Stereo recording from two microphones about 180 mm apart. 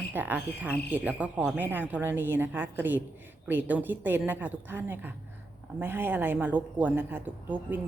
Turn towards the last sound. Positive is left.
turn(degrees=-10)  # may be behind; listen again after turning